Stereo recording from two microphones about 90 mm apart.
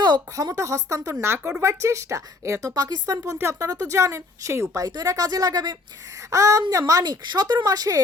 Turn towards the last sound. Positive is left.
turn(degrees=-45)  # may be behind; listen again after turning